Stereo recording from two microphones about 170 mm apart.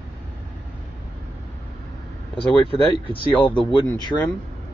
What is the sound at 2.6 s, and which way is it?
Speech, 30° left (ahead or behind).